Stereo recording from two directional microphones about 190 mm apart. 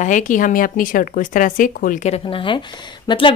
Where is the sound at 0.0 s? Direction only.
40° left (ahead or behind).